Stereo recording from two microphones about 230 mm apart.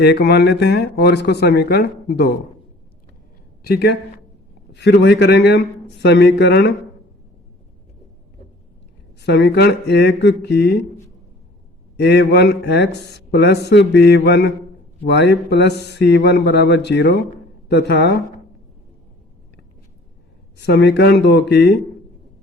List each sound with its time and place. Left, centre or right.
0.0 s speech: left
3.6 s speech: left
9.2 s speech: left
11.9 s speech: left
20.6 s speech: left